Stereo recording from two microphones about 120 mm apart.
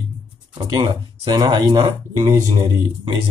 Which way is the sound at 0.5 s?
40° right (ahead or behind).